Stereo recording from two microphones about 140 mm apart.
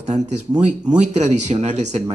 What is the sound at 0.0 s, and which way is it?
Speech, 55° right (ahead or behind).